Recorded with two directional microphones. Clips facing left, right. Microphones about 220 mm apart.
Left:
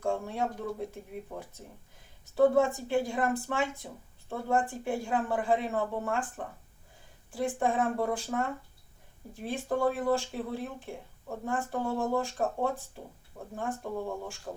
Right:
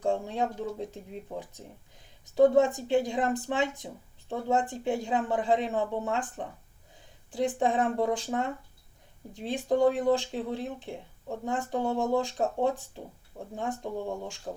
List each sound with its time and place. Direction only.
0.0 s speech: 15° right (ahead or behind)